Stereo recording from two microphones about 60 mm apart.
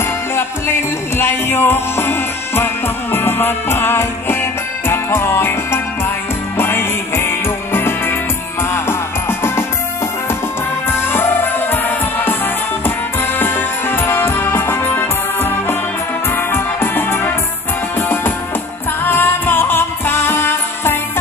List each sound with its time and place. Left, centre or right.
0.4 s music: left
10.9 s music: left
13.4 s music: left
16.5 s music: left